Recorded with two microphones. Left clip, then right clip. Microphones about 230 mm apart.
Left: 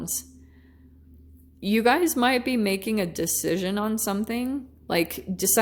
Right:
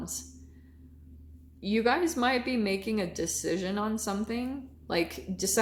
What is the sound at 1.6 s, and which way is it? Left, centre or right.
A woman's voice, left.